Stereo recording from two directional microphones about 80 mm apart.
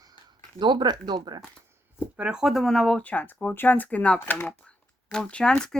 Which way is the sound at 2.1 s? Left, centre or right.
Centre.